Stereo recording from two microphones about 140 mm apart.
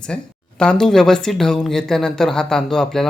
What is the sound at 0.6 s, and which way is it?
Speech, 5° left (ahead or behind).